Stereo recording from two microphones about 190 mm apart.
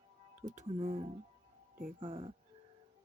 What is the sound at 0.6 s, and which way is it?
Speech, 35° right (ahead or behind).